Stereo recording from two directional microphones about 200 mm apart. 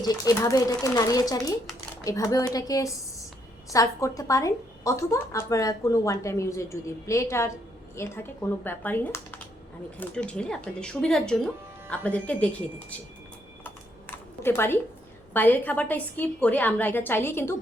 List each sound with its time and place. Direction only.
0.0 s speech: 20° left (ahead or behind)
14.4 s speech: 10° left (ahead or behind)